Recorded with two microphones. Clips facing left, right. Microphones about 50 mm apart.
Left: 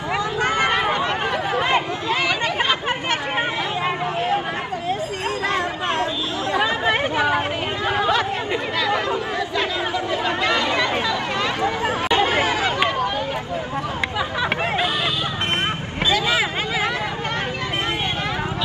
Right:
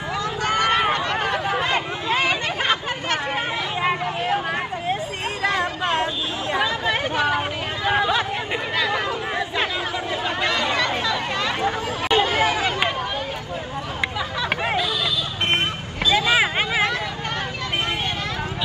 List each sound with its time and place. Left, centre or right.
0.4 s a sound: left
0.9 s a sound: centre
2.0 s chatter: right
6.6 s chatter: left
10.7 s chatter: centre
11.6 s chatter: left
16.1 s vehicle: right